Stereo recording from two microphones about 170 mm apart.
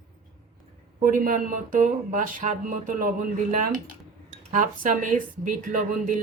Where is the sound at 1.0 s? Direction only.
55° right (ahead or behind).